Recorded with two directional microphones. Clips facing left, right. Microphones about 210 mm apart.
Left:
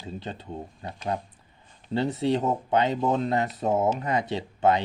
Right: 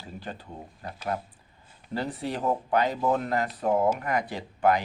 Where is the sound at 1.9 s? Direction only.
25° left (ahead or behind).